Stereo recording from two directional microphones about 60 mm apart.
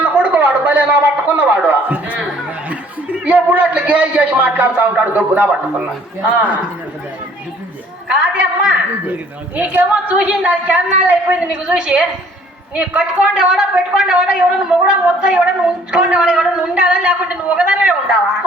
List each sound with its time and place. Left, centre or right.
0.0 s a sound: right
6.2 s a woman's voice: right
8.0 s a woman's voice: right